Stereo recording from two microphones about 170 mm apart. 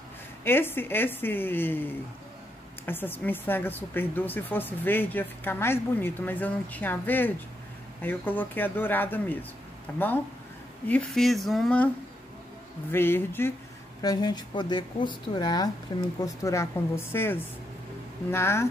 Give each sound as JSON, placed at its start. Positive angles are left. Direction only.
{"t": 0.4, "sound": "speech", "side_deg": 15}
{"t": 12.9, "sound": "speech", "side_deg": 10}
{"t": 14.0, "sound": "speech", "side_deg": 25}